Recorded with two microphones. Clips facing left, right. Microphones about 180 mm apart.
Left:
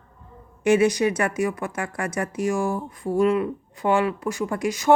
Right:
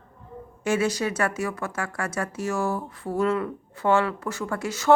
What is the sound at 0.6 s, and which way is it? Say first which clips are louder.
Speech: left 6 dB; 15° left (ahead or behind).